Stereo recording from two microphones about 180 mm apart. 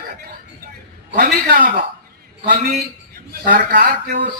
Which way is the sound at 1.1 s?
50° right (ahead or behind).